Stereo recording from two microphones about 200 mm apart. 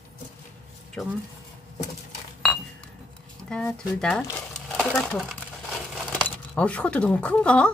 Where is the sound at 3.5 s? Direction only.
5° left (ahead or behind).